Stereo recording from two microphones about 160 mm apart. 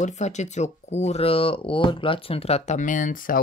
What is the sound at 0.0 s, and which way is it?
Speech, 45° left (ahead or behind).